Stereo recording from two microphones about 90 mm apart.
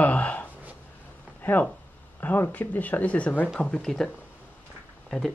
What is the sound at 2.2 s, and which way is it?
Speech, 20° left (ahead or behind).